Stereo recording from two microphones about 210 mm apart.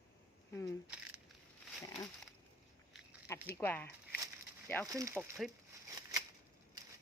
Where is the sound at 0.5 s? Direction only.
15° left (ahead or behind).